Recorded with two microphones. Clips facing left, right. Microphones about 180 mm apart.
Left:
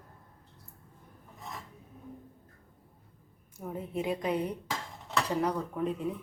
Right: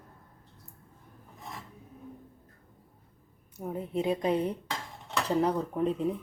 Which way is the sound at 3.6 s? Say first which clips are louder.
Right 3 dB; 20° right (ahead or behind).